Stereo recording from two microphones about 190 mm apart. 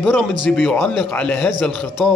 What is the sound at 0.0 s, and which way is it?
Speech, 5° left (ahead or behind).